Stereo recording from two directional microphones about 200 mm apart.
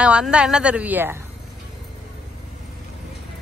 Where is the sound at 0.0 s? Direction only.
5° right (ahead or behind).